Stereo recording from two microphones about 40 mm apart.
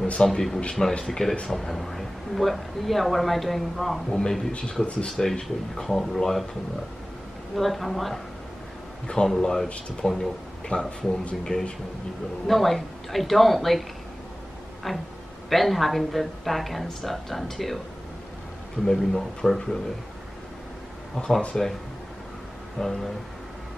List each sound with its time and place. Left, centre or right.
0.2 s speech: centre
0.6 s speech: left
1.0 s a woman's voice: centre
4.1 s speech: centre
5.0 s speech: centre
7.5 s a woman's voice: centre
9.0 s speech: centre
12.4 s a woman's voice: centre
14.9 s a woman's voice: centre
18.9 s speech: centre
21.5 s speech: left
22.8 s speech: centre